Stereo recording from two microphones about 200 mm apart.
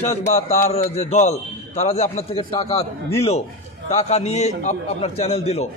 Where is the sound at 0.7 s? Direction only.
35° left (ahead or behind).